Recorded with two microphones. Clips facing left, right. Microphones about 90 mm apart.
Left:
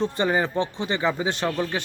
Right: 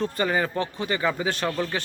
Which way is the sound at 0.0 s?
20° left (ahead or behind).